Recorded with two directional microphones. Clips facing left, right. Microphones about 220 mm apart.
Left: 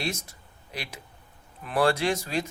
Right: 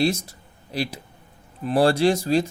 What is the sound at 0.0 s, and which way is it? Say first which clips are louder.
Speech: right 11 dB; 30° right (ahead or behind).